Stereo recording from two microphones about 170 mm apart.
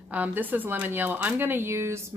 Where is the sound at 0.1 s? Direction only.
10° right (ahead or behind).